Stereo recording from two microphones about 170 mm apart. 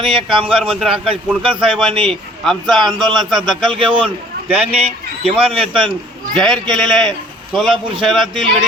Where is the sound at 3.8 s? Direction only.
30° right (ahead or behind).